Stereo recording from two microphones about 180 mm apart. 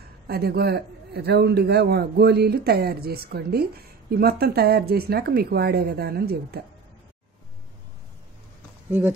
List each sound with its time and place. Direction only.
0.3 s a man's voice: 60° right (ahead or behind)